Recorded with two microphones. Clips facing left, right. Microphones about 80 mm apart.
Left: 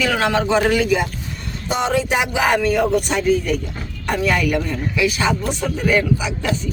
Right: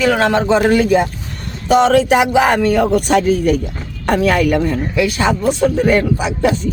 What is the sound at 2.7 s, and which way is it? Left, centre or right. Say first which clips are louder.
Speech: right 5 dB; right.